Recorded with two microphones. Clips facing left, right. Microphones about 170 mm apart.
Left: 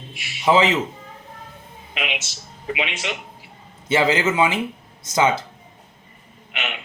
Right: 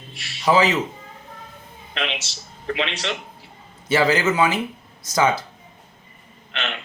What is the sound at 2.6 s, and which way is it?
Speech, 10° left (ahead or behind).